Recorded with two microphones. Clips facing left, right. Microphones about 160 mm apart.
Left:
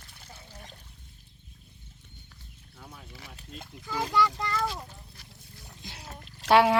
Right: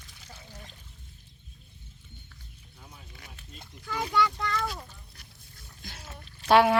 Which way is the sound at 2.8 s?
55° left (ahead or behind).